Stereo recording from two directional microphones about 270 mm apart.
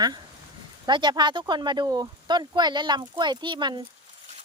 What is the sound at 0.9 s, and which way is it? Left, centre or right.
Speech, centre.